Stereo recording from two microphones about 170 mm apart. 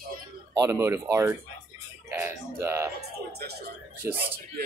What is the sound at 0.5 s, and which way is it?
Speech, 15° right (ahead or behind).